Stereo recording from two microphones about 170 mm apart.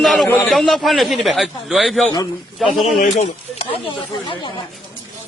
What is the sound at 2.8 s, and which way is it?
Speech, 45° left (ahead or behind).